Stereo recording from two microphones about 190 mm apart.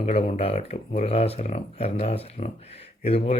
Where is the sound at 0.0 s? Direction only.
30° left (ahead or behind).